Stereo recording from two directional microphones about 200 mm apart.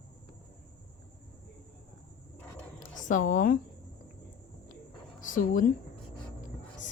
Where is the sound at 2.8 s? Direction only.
40° left (ahead or behind).